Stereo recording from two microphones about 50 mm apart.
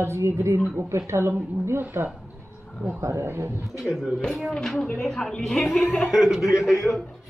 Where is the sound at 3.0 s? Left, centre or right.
Right.